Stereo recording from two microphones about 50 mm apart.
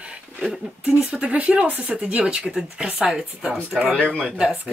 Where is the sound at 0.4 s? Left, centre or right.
Centre.